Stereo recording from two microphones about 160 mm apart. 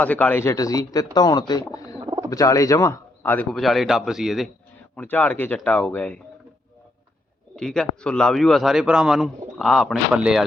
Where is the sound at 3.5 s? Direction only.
Centre (ahead or behind).